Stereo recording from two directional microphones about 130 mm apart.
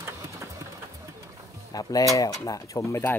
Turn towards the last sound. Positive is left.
turn(degrees=20)  # may be behind; listen again after turning